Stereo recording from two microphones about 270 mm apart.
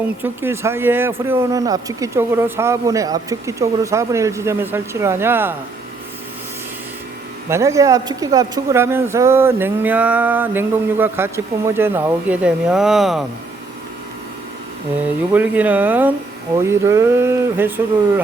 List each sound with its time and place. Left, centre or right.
0.2 s speech: centre
7.5 s speech: centre
15.3 s speech: centre